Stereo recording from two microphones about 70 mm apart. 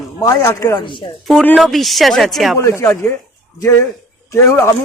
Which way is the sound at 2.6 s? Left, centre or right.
Left.